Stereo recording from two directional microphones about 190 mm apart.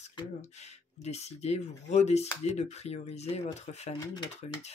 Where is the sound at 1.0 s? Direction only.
35° left (ahead or behind).